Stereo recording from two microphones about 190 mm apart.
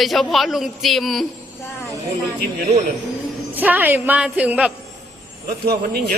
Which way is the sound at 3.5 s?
10° right (ahead or behind).